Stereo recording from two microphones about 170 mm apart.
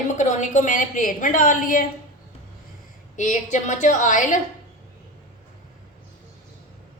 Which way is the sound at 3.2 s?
45° left (ahead or behind).